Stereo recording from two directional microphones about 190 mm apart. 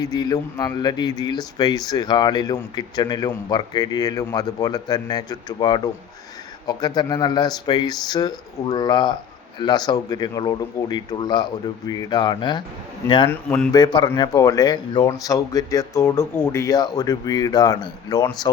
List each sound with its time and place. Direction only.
0.0 s speech: 20° left (ahead or behind)